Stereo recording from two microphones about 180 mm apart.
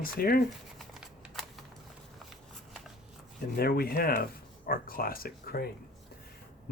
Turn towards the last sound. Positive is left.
turn(degrees=55)  # may be behind; listen again after turning